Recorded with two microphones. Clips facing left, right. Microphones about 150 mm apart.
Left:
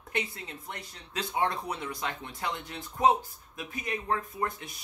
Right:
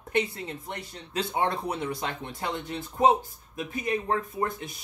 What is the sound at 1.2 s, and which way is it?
Speech, 30° right (ahead or behind).